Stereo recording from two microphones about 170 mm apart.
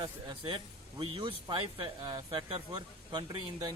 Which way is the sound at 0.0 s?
30° right (ahead or behind).